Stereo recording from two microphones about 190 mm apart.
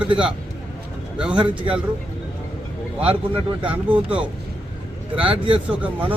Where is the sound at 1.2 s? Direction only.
5° right (ahead or behind).